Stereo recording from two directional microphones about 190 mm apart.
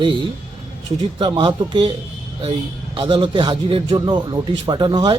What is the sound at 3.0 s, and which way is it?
Speech, 25° right (ahead or behind).